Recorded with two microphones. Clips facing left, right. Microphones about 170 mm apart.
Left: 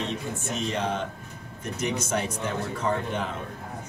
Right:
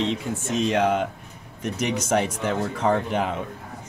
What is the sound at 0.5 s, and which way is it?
Speech, 90° right.